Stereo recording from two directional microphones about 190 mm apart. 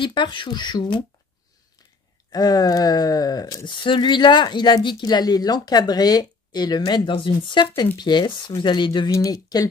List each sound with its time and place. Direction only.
0.0 s speech: 25° left (ahead or behind)
2.3 s speech: 20° left (ahead or behind)